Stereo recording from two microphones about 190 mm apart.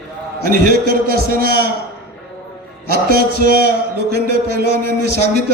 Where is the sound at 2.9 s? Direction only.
50° right (ahead or behind).